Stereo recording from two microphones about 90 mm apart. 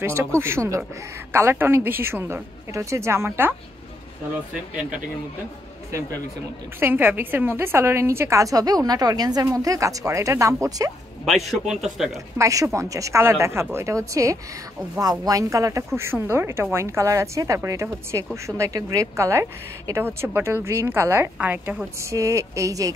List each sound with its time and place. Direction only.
0.0 s a woman's voice: 30° right (ahead or behind)
5.9 s speech: 35° right (ahead or behind)
6.8 s a woman's voice: 20° right (ahead or behind)
11.2 s a man's voice: 5° right (ahead or behind)
12.4 s a woman's voice: 40° right (ahead or behind); by 21.8 s 20° right (ahead or behind)
22.0 s a woman's voice: 35° right (ahead or behind)